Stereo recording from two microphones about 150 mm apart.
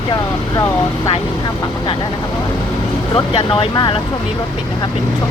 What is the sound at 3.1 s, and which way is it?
Speech, 35° left (ahead or behind).